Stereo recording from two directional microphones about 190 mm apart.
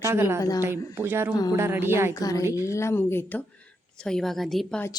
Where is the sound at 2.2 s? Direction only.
20° left (ahead or behind); by 4.8 s centre (ahead or behind).